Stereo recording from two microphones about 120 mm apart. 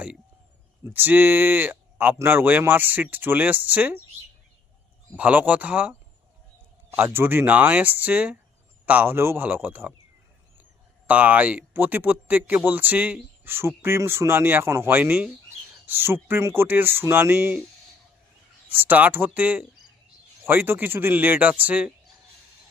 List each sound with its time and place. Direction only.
0.9 s speech: 15° right (ahead or behind)
5.1 s speech: 10° right (ahead or behind)
11.0 s speech: 10° right (ahead or behind)
18.7 s speech: 15° right (ahead or behind)